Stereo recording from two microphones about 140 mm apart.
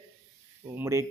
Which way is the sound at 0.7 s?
20° right (ahead or behind).